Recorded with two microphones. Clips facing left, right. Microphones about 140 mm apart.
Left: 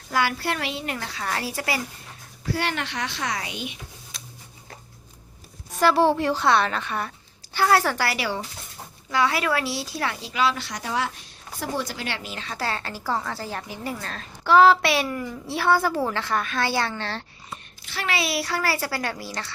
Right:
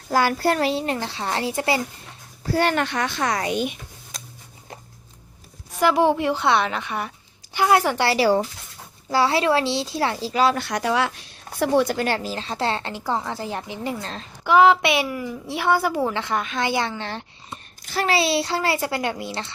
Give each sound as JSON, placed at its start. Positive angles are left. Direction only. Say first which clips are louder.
{"t": 0.1, "sound": "a woman's voice", "louder": "right 5 dB", "side_deg": -40}
{"t": 2.4, "sound": "speech", "louder": "right 6 dB", "side_deg": -45}
{"t": 5.8, "sound": "a woman's voice", "louder": "right 1 dB", "side_deg": -15}
{"t": 11.6, "sound": "a woman's voice", "louder": "right 10 dB", "side_deg": -65}
{"t": 17.8, "sound": "a woman's voice", "louder": "right 6 dB", "side_deg": -40}